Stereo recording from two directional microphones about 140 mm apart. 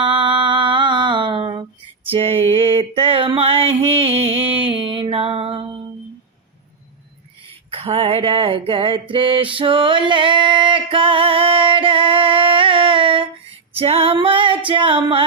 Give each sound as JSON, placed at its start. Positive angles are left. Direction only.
{"t": 0.0, "sound": "music", "side_deg": -35}
{"t": 2.0, "sound": "a sound", "side_deg": -45}
{"t": 4.8, "sound": "music", "side_deg": -40}
{"t": 7.7, "sound": "a sound", "side_deg": -45}
{"t": 9.6, "sound": "music", "side_deg": -40}
{"t": 13.7, "sound": "female singing", "side_deg": -45}